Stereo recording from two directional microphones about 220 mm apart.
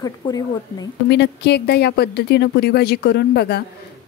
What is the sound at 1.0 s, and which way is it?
Speech, 50° left (ahead or behind).